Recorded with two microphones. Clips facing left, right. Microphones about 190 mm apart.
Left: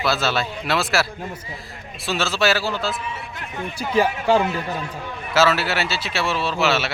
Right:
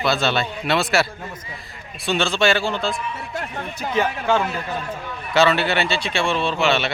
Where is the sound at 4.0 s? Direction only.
35° left (ahead or behind).